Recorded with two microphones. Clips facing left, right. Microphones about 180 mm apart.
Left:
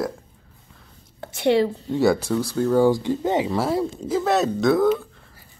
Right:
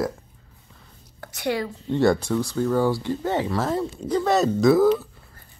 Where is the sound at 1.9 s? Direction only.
5° left (ahead or behind).